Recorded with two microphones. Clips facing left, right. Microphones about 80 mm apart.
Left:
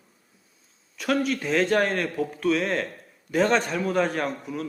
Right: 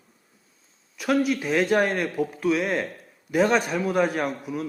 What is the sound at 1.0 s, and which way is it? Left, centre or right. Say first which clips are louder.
A man's voice: right 2 dB; centre.